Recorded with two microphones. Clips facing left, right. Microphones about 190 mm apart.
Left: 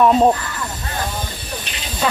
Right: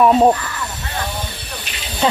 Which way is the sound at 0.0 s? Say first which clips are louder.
Right 1 dB; 5° right (ahead or behind).